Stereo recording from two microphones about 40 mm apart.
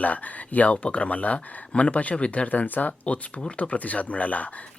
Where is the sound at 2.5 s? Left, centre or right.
Left.